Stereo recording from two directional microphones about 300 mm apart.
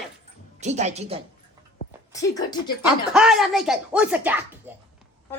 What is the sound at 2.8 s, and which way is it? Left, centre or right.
Speech, centre.